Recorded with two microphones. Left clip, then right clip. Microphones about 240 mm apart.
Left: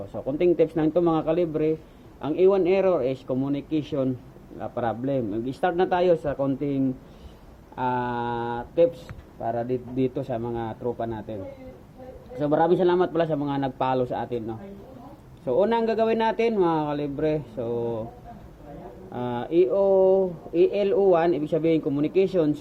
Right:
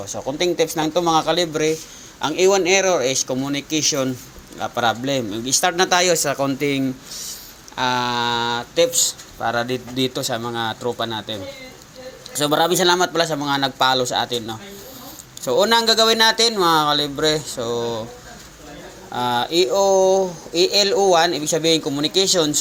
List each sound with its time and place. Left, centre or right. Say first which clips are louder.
0.3 s a man's voice: right 1 dB; centre
9.5 s speech: right 5 dB; right
9.9 s a man's voice: right 5 dB; centre
12.4 s a man's voice: right 4 dB; centre
17.7 s speech: right 4 dB; right
19.1 s speech: right 5 dB; centre